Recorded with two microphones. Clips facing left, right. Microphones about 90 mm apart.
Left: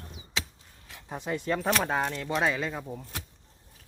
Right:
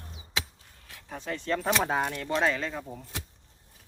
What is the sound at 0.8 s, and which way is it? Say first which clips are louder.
Speech: left 2 dB; 15° left (ahead or behind).